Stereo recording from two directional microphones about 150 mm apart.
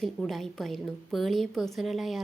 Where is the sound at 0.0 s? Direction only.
Centre (ahead or behind).